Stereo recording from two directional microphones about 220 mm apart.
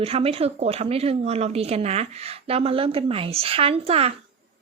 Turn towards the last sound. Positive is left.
turn(degrees=-25)  # may be behind; listen again after turning